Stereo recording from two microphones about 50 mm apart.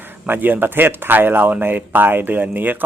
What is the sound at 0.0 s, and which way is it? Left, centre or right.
Speech, right.